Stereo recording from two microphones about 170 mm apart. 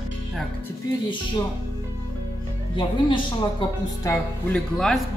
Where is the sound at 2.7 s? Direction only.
30° left (ahead or behind).